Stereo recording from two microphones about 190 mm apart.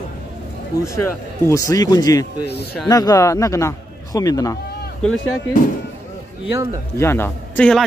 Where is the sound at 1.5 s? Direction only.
15° left (ahead or behind).